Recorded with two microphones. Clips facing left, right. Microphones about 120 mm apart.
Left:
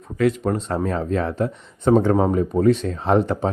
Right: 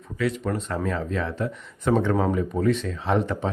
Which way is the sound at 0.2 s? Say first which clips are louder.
Left 6 dB; 40° left (ahead or behind).